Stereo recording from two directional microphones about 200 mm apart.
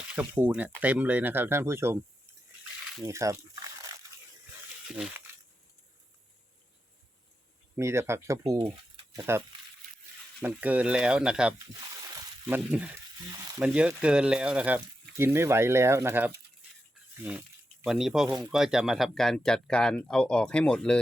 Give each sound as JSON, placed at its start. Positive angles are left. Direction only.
{"t": 0.2, "sound": "speech", "side_deg": -10}
{"t": 3.0, "sound": "speech", "side_deg": -15}
{"t": 4.9, "sound": "speech", "side_deg": 0}
{"t": 7.8, "sound": "speech", "side_deg": -15}
{"t": 10.4, "sound": "speech", "side_deg": -10}
{"t": 17.8, "sound": "speech", "side_deg": 0}